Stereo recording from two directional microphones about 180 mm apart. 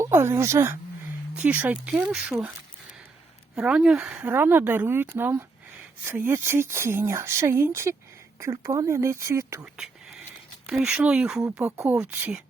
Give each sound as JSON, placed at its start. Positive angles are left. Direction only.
{"t": 0.0, "sound": "speech", "side_deg": -15}
{"t": 3.5, "sound": "speech", "side_deg": -5}
{"t": 9.7, "sound": "whispering", "side_deg": -5}
{"t": 10.7, "sound": "speech", "side_deg": -5}